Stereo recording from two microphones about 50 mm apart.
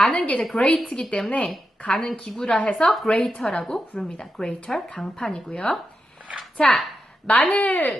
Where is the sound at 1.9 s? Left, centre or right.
Centre.